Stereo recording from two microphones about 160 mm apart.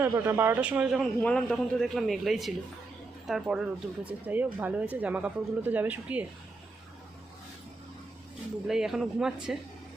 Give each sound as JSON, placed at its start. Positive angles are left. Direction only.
{"t": 0.0, "sound": "speech", "side_deg": -15}
{"t": 1.2, "sound": "a man's voice", "side_deg": 5}
{"t": 8.6, "sound": "a man's voice", "side_deg": -5}